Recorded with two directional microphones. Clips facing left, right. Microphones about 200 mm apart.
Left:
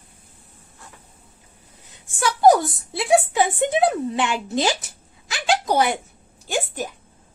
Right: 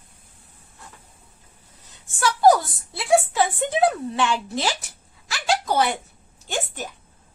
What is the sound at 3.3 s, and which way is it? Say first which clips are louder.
A woman's voice: left 2 dB; 20° left (ahead or behind).